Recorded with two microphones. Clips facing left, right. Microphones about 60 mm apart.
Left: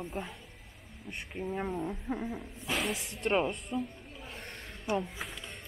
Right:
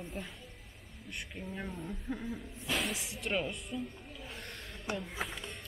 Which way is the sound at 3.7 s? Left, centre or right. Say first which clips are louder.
Left 4 dB; left.